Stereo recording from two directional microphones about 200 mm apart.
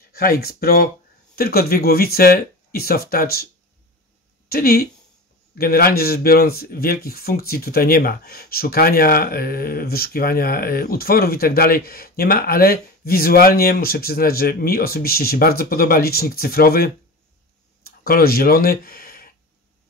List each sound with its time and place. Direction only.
0.1 s speech: 50° left (ahead or behind)
4.5 s speech: 50° left (ahead or behind)